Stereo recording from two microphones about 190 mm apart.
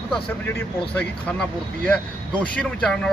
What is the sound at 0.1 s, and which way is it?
Speech, 10° left (ahead or behind).